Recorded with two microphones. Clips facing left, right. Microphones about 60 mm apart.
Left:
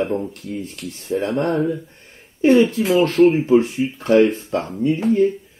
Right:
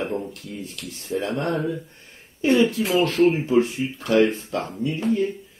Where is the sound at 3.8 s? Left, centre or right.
Centre.